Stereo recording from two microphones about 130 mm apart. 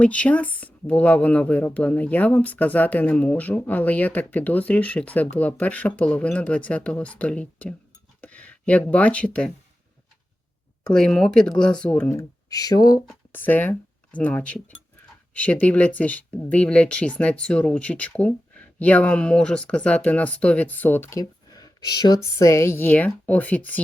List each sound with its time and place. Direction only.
0.0 s speech: 10° left (ahead or behind)
10.8 s speech: 5° left (ahead or behind)
12.1 s speech: 30° left (ahead or behind)
13.3 s speech: 15° left (ahead or behind)